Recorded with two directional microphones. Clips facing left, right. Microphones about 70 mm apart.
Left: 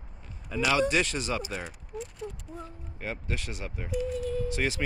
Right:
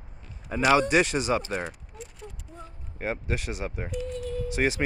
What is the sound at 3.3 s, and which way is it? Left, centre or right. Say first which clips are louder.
Speech: right 5 dB; centre.